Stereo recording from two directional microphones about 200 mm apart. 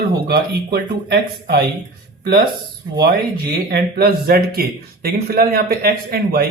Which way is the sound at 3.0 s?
55° right (ahead or behind).